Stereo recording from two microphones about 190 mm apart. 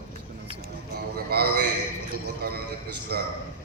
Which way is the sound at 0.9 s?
55° right (ahead or behind).